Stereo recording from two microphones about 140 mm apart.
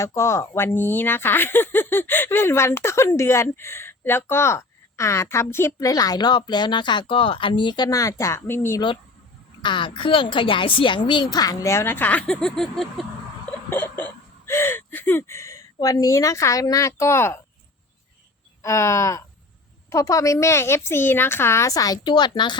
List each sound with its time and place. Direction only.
0.0 s speech: 20° left (ahead or behind)
9.6 s speech: 35° left (ahead or behind); by 13.5 s 5° left (ahead or behind)
13.7 s speech: 15° left (ahead or behind)
18.6 s speech: 20° left (ahead or behind)